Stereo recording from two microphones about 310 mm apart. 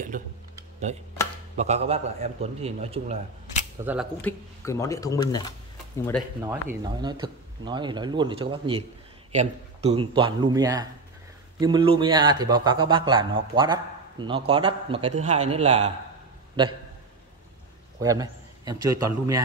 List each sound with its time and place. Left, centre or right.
0.1 s a man's voice: right
3.8 s speech: centre
6.4 s a man's voice: centre
17.9 s a man's voice: centre